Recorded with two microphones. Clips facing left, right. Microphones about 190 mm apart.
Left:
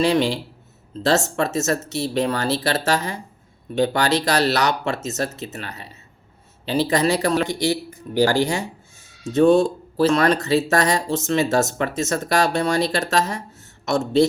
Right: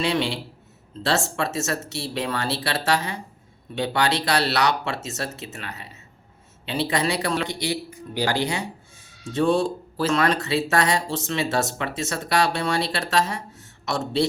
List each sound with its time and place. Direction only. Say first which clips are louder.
0.0 s speech: left 5 dB; 40° left (ahead or behind)